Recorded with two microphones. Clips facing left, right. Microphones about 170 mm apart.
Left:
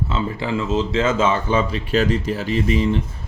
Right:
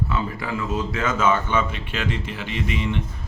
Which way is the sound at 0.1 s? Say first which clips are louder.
Left 4 dB; 25° left (ahead or behind).